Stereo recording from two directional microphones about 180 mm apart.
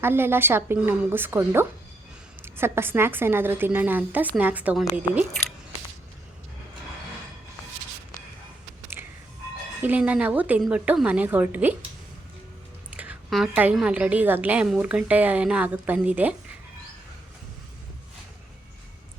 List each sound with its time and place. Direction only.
0.0 s a woman's voice: 10° right (ahead or behind)
9.0 s a sound: 15° right (ahead or behind)
9.8 s a woman's voice: 10° right (ahead or behind)
12.9 s a woman's voice: 10° right (ahead or behind)